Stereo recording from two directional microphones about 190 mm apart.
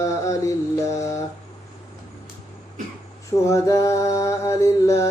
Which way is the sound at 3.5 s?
15° left (ahead or behind).